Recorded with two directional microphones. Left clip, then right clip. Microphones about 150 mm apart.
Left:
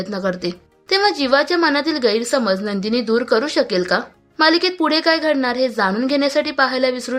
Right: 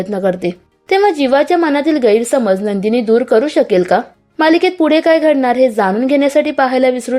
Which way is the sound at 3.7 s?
40° right (ahead or behind).